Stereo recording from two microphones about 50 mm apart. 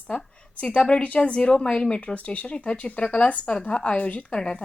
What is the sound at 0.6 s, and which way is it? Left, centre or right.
A woman's voice, left.